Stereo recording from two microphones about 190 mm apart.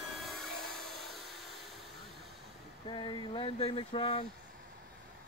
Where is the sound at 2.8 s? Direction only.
25° left (ahead or behind).